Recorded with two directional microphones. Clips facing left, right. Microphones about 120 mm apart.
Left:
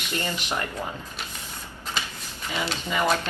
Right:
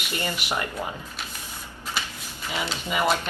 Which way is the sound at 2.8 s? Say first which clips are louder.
Right 1 dB; 10° right (ahead or behind).